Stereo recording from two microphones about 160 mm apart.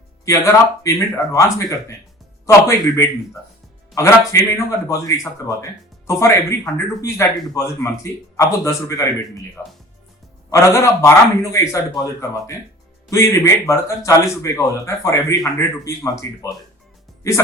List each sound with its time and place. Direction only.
0.3 s a man's voice: 20° left (ahead or behind)
13.1 s a man's voice: 20° left (ahead or behind)